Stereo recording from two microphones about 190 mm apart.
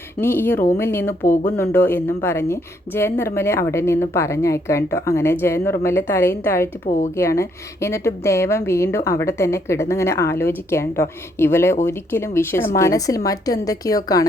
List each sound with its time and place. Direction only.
0.2 s a woman's voice: 10° left (ahead or behind)
1.3 s speech: 40° left (ahead or behind)
1.5 s a woman's voice: 10° left (ahead or behind)